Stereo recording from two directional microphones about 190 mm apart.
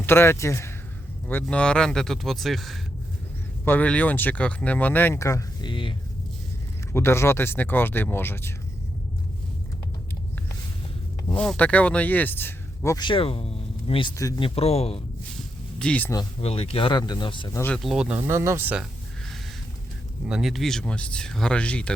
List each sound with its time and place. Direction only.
0.0 s speech: 10° left (ahead or behind)
6.9 s speech: 15° left (ahead or behind)
11.3 s speech: 5° left (ahead or behind); by 15.0 s 30° left (ahead or behind)
15.8 s speech: 5° left (ahead or behind)
16.4 s speech: 30° left (ahead or behind)
17.6 s speech: 5° left (ahead or behind)
20.2 s speech: centre (ahead or behind)